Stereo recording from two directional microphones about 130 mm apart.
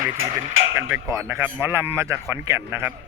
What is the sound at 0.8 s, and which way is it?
Speech, 20° right (ahead or behind).